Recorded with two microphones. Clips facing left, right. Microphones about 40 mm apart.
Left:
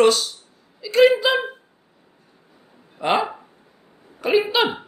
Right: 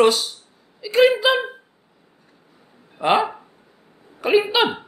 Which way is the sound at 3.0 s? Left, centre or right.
Centre.